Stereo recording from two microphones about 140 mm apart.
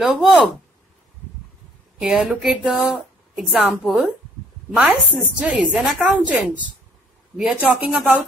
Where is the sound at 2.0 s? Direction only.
5° right (ahead or behind).